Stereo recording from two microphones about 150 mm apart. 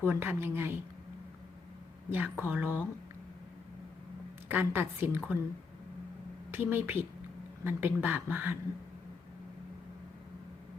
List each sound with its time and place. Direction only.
0.0 s speech: 15° right (ahead or behind)
2.0 s speech: 10° right (ahead or behind)
4.4 s speech: 15° right (ahead or behind)
6.5 s speech: 15° right (ahead or behind)